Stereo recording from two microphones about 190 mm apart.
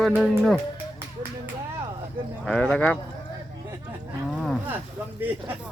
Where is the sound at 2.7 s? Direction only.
10° left (ahead or behind).